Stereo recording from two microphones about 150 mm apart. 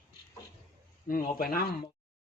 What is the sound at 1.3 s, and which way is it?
Speech, 75° left (ahead or behind).